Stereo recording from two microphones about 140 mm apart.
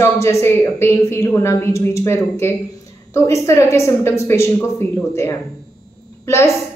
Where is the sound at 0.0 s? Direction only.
20° left (ahead or behind).